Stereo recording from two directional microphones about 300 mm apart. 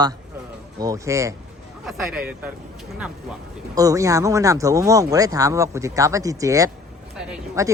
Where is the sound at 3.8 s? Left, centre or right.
Centre.